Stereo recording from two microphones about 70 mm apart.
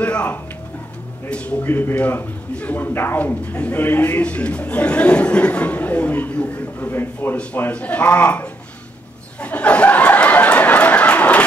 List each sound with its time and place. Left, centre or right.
0.0 s speech: left
3.5 s speech: left
9.4 s a sound: centre